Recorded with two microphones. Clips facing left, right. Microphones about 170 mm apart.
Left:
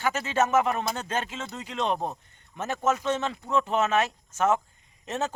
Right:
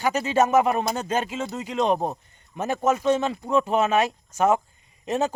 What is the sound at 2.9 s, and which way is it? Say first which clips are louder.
A man's voice: right 6 dB; 10° right (ahead or behind).